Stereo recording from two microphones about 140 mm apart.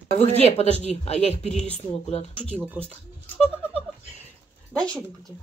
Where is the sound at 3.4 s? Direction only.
10° right (ahead or behind).